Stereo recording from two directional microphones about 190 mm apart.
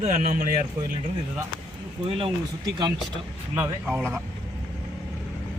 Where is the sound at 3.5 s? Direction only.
10° right (ahead or behind).